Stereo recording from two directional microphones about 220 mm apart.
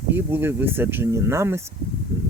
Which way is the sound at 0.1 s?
10° right (ahead or behind).